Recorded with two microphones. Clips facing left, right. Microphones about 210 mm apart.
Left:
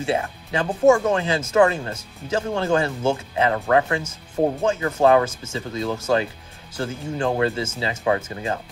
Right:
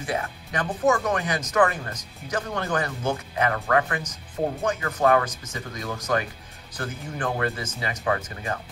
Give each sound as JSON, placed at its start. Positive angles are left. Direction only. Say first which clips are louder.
{"t": 0.0, "sound": "speech", "louder": "left 5 dB", "side_deg": 25}